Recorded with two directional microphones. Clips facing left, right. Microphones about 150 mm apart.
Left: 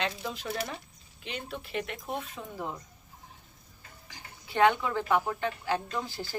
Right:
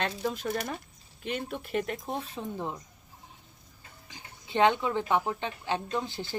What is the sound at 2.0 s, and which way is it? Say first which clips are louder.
Speech: right 2 dB; 30° right (ahead or behind).